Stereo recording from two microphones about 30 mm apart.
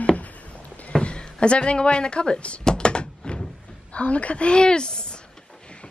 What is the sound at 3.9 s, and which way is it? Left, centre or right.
A woman's voice, left.